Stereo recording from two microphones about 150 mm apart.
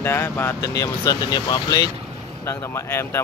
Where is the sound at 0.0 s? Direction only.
15° left (ahead or behind).